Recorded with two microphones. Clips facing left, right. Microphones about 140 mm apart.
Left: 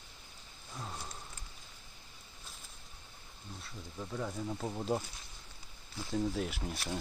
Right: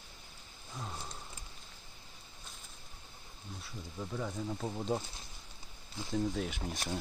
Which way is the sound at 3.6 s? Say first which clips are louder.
Right 2 dB; centre (ahead or behind).